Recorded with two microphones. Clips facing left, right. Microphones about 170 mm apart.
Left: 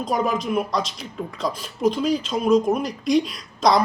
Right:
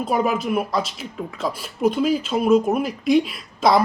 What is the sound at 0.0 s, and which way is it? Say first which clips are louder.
Speech: right 2 dB; 5° right (ahead or behind).